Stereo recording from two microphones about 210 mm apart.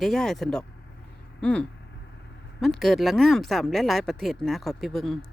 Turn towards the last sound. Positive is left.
turn(degrees=0)  # may be behind; listen again after turning